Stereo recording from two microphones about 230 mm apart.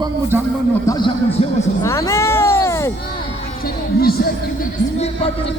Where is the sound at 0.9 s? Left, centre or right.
Centre.